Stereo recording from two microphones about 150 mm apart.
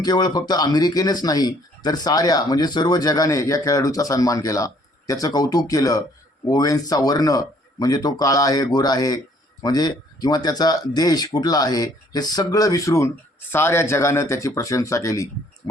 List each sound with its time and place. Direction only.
0.0 s speech: 25° left (ahead or behind)